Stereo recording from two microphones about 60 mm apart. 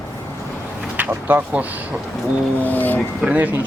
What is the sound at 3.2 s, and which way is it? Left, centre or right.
Speech, right.